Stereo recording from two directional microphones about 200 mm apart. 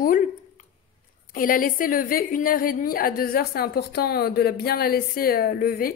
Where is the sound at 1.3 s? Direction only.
45° left (ahead or behind).